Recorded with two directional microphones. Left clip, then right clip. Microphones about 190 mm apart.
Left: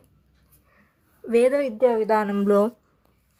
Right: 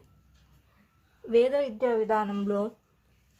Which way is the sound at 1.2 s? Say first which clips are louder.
Left 4 dB; 35° left (ahead or behind).